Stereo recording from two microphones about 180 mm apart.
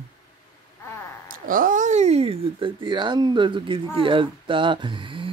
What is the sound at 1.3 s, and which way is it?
Speech, 50° right (ahead or behind).